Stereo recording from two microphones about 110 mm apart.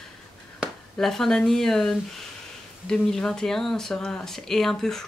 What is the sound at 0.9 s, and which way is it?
Speech, 5° left (ahead or behind).